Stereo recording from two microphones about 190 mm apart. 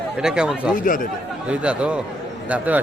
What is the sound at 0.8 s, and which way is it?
Speech, 45° left (ahead or behind).